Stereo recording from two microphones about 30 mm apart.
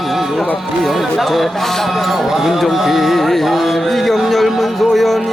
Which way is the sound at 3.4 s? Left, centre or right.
Centre.